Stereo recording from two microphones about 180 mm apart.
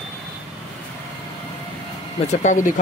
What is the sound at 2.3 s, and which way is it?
Speech, 45° left (ahead or behind).